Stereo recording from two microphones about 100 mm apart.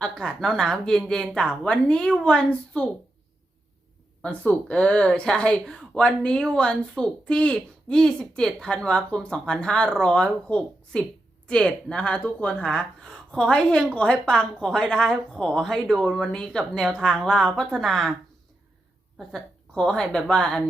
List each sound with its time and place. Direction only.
0.0 s speech: 5° left (ahead or behind)
4.2 s a woman's voice: 10° left (ahead or behind)
19.3 s speech: 5° left (ahead or behind)